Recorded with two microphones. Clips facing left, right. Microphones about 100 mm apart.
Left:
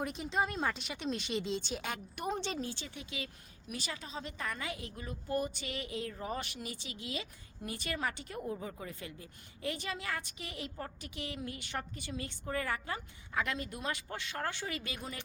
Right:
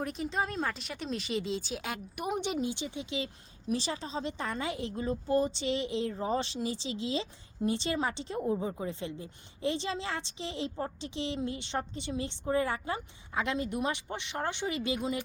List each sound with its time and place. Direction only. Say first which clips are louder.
0.0 s a woman's voice: right 1 dB; centre (ahead or behind); by 15.2 s 20° right (ahead or behind)